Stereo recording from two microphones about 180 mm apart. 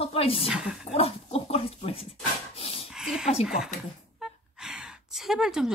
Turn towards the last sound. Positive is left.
turn(degrees=-5)  # may be behind; listen again after turning